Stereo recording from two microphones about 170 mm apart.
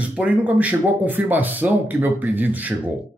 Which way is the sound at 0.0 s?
10° right (ahead or behind).